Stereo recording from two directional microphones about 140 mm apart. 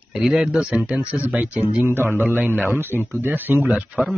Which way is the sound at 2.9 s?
15° left (ahead or behind).